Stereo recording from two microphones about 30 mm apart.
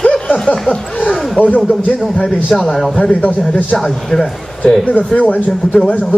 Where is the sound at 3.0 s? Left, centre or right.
Left.